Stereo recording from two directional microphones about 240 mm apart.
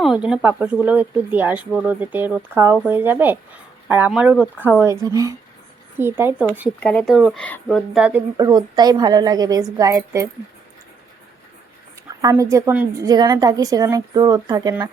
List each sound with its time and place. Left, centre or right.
0.0 s speech: centre
6.7 s speech: centre
8.4 s speech: centre
12.2 s speech: centre